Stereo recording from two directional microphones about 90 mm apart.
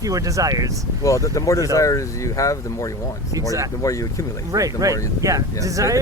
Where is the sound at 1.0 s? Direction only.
40° left (ahead or behind).